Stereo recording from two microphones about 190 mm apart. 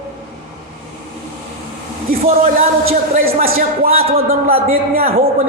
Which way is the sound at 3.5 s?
50° right (ahead or behind).